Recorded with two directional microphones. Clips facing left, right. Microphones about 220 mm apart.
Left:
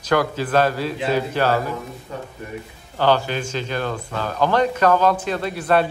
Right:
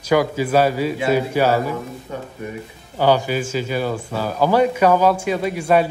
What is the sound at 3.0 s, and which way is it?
A man's voice, 10° right (ahead or behind).